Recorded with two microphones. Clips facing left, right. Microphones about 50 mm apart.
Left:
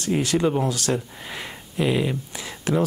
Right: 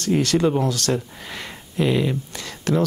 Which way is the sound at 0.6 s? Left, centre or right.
Centre.